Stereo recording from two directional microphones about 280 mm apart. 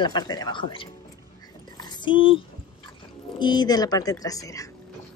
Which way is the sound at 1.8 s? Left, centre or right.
Centre.